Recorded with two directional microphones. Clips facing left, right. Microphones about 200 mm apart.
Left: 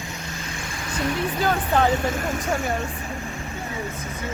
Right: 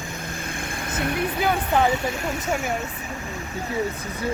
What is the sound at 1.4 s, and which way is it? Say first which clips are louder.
Speech: even; 15° right (ahead or behind).